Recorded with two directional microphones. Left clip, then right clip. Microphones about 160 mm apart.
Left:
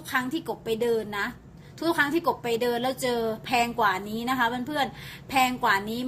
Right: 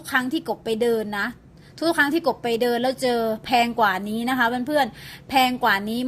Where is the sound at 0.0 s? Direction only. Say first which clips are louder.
Right 5 dB; 50° right (ahead or behind).